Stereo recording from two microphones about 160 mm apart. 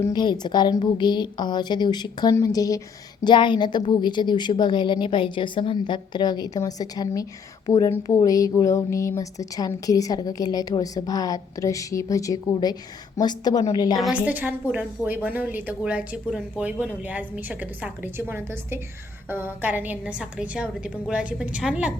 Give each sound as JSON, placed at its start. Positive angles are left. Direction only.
{"t": 0.0, "sound": "speech", "side_deg": 25}
{"t": 14.0, "sound": "a woman's voice", "side_deg": -10}